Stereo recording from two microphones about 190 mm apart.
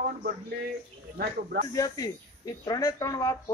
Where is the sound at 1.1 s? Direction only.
50° right (ahead or behind).